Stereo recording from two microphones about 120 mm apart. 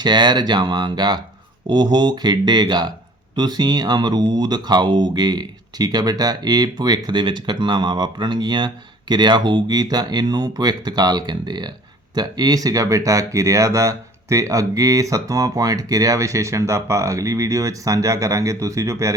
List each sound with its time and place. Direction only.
0.0 s speech: 40° right (ahead or behind)